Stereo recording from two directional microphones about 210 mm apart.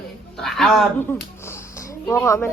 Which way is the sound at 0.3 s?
Centre (ahead or behind).